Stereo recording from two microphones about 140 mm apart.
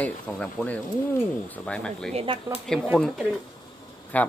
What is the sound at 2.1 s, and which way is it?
Speech, 40° right (ahead or behind).